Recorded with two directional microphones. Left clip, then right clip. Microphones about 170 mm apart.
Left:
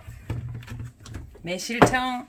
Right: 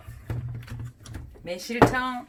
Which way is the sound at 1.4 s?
55° left (ahead or behind).